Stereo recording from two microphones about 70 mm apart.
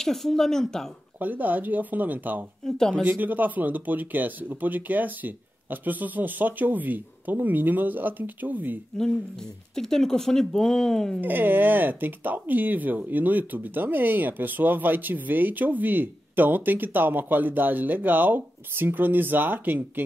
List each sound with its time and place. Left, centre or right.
0.0 s speech: centre
1.2 s speech: right
2.6 s speech: centre
3.0 s speech: right
9.8 s speech: centre
11.1 s speech: right